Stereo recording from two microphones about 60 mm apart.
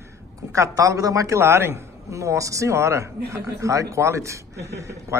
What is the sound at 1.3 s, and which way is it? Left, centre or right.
A man's voice, right.